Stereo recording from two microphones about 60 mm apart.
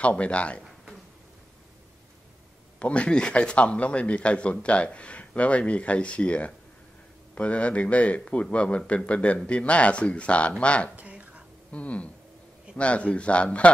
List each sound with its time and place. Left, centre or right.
0.0 s speech: left
2.8 s speech: centre
11.0 s a sound: right
11.7 s speech: left